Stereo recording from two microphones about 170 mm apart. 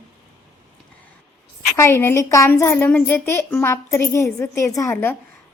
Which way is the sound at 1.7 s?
15° left (ahead or behind).